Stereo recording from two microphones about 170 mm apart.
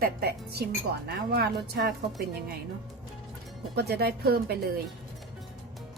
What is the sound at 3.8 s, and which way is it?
Speech, 70° right (ahead or behind).